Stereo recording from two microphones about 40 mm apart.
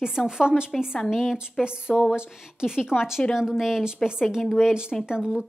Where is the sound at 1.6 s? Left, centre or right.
Right.